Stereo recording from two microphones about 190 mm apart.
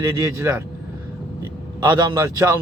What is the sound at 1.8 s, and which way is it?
Speech, 20° right (ahead or behind).